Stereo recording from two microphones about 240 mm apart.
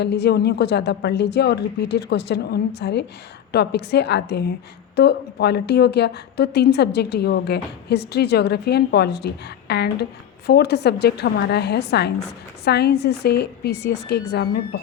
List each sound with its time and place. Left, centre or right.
0.0 s a woman's voice: left